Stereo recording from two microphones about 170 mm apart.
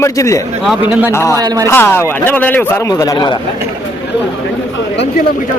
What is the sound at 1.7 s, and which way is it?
A man's voice, 15° left (ahead or behind).